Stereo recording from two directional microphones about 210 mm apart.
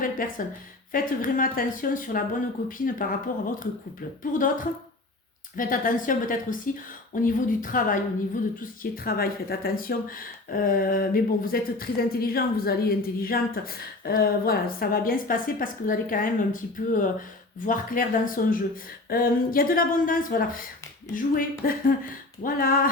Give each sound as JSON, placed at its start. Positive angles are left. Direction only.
{"t": 0.0, "sound": "a woman's voice", "side_deg": 40}
{"t": 5.5, "sound": "a woman's voice", "side_deg": 40}